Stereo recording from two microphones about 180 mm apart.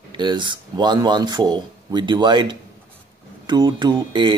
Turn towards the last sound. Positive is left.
turn(degrees=-25)  # may be behind; listen again after turning